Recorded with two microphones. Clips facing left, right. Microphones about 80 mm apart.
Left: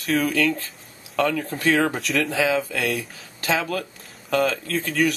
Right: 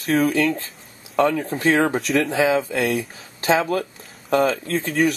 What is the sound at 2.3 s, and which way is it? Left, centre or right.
Speech, right.